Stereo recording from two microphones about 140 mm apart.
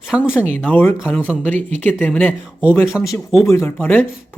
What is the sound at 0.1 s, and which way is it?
Speech, 10° right (ahead or behind).